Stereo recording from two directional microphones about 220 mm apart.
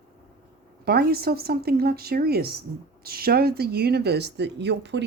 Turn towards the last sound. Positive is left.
turn(degrees=-50)  # may be behind; listen again after turning